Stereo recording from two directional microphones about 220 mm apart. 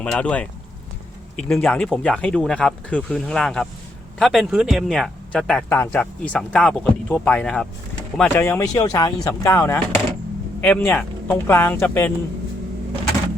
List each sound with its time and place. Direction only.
0.0 s speech: 5° left (ahead or behind)